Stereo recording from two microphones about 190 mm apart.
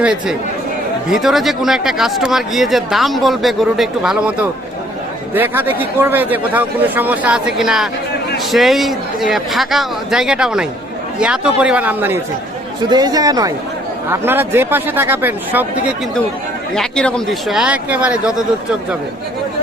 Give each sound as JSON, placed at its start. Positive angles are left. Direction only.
{"t": 0.0, "sound": "speech", "side_deg": -5}
{"t": 5.3, "sound": "speech", "side_deg": -10}
{"t": 12.9, "sound": "speech", "side_deg": -20}
{"t": 16.7, "sound": "speech", "side_deg": 5}